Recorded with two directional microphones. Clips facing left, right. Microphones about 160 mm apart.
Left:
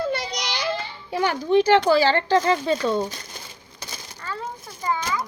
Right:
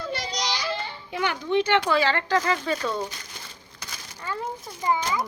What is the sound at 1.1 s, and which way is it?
A woman's voice, 35° left (ahead or behind).